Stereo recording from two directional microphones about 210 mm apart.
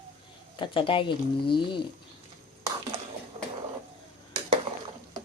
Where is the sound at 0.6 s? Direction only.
25° left (ahead or behind).